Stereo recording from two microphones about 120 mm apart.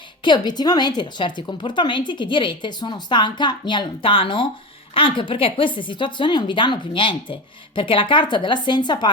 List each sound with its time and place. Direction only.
0.3 s a woman's voice: 35° left (ahead or behind)